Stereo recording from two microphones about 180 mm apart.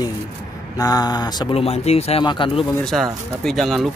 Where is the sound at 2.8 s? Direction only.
Centre (ahead or behind).